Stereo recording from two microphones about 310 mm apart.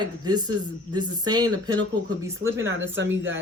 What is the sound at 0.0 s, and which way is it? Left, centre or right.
Speech, centre.